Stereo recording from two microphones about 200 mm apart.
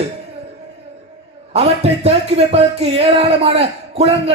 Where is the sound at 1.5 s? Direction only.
30° right (ahead or behind).